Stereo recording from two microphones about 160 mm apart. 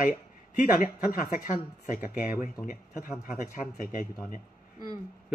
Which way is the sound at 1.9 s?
15° right (ahead or behind).